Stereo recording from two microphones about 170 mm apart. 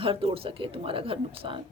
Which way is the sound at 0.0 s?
30° right (ahead or behind).